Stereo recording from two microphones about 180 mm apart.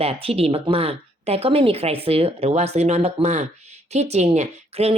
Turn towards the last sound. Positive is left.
turn(degrees=-35)  # may be behind; listen again after turning